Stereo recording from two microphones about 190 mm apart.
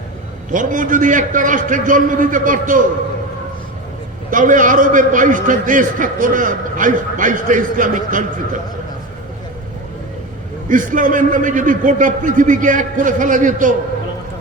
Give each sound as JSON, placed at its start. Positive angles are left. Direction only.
{"t": 0.5, "sound": "a man's voice", "side_deg": -45}
{"t": 4.3, "sound": "a man's voice", "side_deg": -45}
{"t": 10.7, "sound": "a man's voice", "side_deg": -45}